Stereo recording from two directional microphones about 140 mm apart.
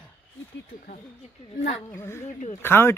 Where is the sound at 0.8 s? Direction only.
55° left (ahead or behind).